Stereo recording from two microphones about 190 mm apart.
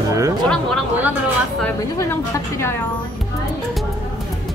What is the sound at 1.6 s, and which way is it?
A woman's voice, 10° left (ahead or behind).